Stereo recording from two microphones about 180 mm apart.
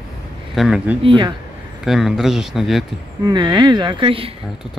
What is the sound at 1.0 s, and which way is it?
Speech, 25° right (ahead or behind).